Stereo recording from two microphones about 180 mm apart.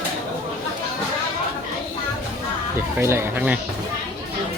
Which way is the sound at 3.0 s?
15° right (ahead or behind).